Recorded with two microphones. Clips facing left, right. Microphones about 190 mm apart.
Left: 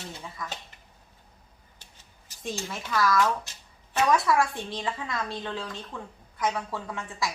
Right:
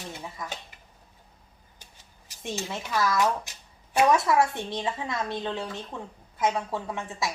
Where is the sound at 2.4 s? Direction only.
15° right (ahead or behind).